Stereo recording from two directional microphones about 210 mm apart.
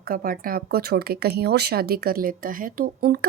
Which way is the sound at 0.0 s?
45° right (ahead or behind).